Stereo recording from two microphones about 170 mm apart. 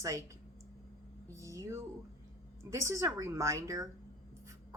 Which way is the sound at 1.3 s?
20° right (ahead or behind).